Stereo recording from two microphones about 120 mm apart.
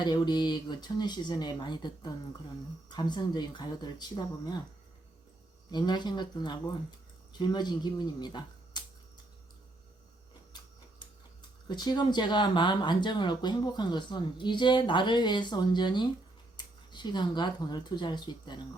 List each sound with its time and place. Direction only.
0.0 s speech: 40° left (ahead or behind)
5.7 s speech: 40° left (ahead or behind)
11.7 s speech: 35° left (ahead or behind)